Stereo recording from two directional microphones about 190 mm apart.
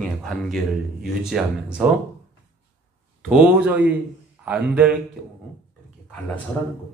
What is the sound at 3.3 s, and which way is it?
Speech, 5° right (ahead or behind).